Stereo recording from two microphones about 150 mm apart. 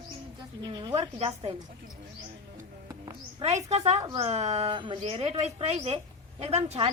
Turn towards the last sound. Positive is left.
turn(degrees=-45)  # may be behind; listen again after turning